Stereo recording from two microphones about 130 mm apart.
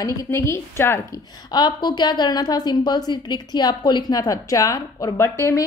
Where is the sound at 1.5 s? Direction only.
35° left (ahead or behind).